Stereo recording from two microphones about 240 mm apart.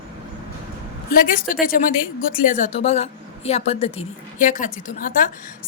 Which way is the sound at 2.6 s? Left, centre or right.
Left.